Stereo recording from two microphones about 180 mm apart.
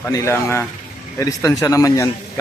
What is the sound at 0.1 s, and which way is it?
A man's voice, 15° left (ahead or behind).